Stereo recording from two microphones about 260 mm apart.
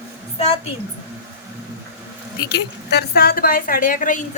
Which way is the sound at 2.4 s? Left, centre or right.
Left.